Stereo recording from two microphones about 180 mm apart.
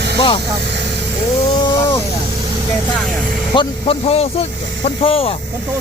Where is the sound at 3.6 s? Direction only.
30° left (ahead or behind).